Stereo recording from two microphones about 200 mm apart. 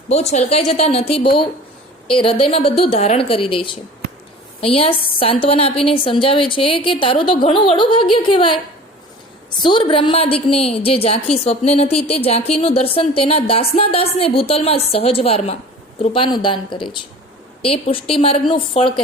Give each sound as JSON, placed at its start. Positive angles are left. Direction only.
{"t": 0.1, "sound": "a woman's voice", "side_deg": 35}
{"t": 4.9, "sound": "a woman's voice", "side_deg": 50}
{"t": 5.2, "sound": "a woman's voice", "side_deg": 30}
{"t": 9.6, "sound": "a woman's voice", "side_deg": 25}